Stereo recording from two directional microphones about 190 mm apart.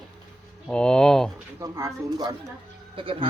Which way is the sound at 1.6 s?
15° right (ahead or behind).